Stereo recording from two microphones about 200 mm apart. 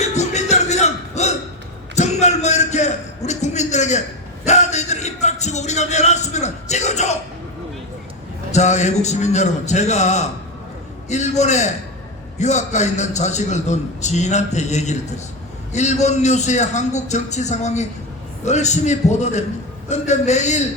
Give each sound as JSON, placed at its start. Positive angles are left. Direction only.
{"t": 0.0, "sound": "music", "side_deg": 35}
{"t": 2.0, "sound": "a sound", "side_deg": 35}
{"t": 8.5, "sound": "a man's voice", "side_deg": 35}